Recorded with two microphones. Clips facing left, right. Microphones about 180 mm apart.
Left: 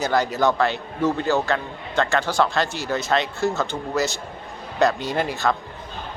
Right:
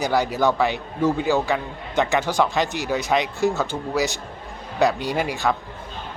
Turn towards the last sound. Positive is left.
turn(degrees=-10)  # may be behind; listen again after turning